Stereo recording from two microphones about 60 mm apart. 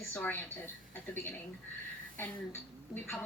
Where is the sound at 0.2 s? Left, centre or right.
Left.